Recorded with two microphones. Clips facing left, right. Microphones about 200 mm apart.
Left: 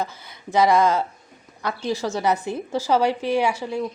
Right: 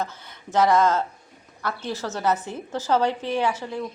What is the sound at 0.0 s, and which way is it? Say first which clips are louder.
A woman's voice: left 2 dB; 10° left (ahead or behind).